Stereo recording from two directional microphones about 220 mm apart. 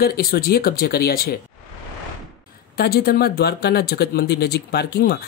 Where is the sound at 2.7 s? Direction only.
45° left (ahead or behind).